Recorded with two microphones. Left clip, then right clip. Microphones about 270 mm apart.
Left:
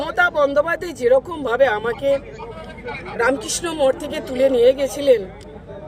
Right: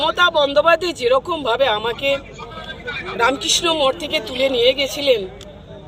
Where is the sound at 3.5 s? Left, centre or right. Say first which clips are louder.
Right 3 dB; centre.